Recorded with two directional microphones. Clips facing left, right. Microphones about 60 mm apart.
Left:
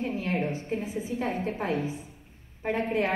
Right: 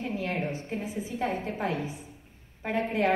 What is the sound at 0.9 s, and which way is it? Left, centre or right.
Speech, left.